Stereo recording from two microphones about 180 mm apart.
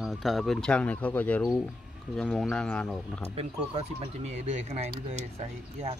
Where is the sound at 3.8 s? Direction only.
40° right (ahead or behind).